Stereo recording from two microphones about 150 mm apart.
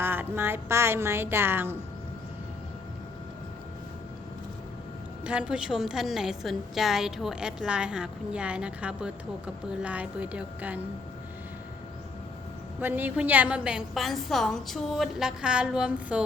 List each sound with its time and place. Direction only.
0.0 s speech: 15° right (ahead or behind)
5.2 s a woman's voice: 5° right (ahead or behind)
12.8 s a woman's voice: 10° right (ahead or behind)